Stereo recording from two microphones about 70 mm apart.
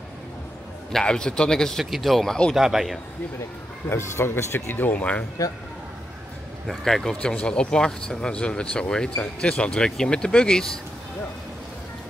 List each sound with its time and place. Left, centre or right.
0.9 s speech: centre
2.5 s speech: centre
3.9 s speech: left
6.7 s speech: centre